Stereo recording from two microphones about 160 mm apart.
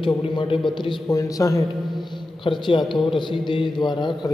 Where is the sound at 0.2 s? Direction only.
35° left (ahead or behind).